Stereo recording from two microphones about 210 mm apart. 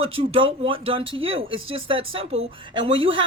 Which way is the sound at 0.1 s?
25° right (ahead or behind).